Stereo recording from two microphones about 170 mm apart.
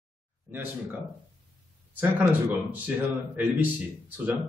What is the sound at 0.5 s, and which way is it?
Speech, 10° right (ahead or behind).